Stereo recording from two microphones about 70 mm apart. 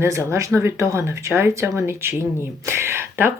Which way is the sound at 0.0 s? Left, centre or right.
Right.